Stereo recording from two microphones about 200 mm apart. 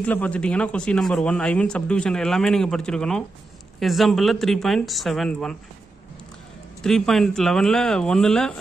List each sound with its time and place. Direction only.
0.0 s speech: 10° left (ahead or behind)
6.8 s speech: centre (ahead or behind)